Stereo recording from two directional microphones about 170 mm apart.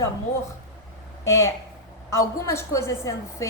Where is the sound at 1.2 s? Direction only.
15° left (ahead or behind).